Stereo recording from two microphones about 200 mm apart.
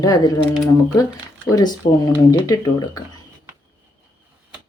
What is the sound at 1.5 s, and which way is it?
Speech, 20° left (ahead or behind).